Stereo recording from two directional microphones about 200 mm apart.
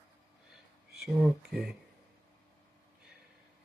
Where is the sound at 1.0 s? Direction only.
Centre (ahead or behind).